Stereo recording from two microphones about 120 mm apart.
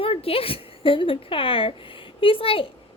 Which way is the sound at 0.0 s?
55° left (ahead or behind).